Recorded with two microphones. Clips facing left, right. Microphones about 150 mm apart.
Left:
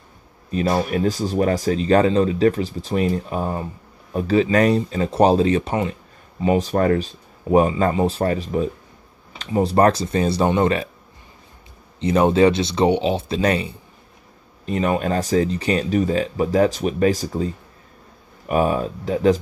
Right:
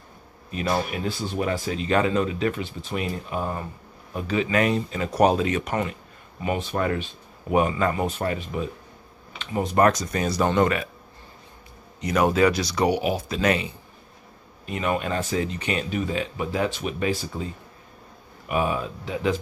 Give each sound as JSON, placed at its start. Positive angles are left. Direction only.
{"t": 0.5, "sound": "speech", "side_deg": 35}
{"t": 12.0, "sound": "speech", "side_deg": 30}
{"t": 14.7, "sound": "speech", "side_deg": 35}
{"t": 18.5, "sound": "speech", "side_deg": 40}